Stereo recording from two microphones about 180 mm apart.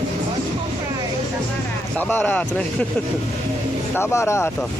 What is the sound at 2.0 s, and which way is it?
Speech, 10° left (ahead or behind).